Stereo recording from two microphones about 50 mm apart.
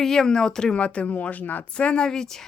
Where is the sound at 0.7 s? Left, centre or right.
Left.